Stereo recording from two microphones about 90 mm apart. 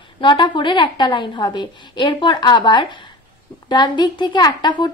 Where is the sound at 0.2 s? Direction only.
60° left (ahead or behind).